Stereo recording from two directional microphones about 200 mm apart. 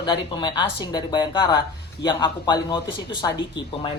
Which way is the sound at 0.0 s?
25° left (ahead or behind).